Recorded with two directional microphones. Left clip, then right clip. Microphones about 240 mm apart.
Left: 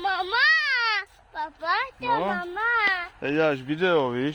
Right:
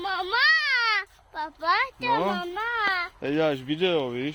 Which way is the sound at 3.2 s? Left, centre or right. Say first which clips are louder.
Left 2 dB; centre.